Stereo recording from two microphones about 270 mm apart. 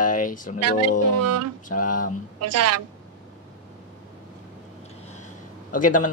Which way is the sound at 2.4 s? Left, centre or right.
Right.